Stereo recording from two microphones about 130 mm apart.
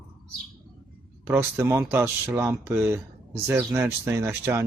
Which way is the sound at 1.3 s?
20° right (ahead or behind).